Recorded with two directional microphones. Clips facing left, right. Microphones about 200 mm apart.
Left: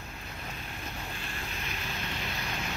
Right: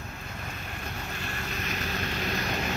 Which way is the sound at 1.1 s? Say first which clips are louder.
Right 4 dB; 70° right (ahead or behind).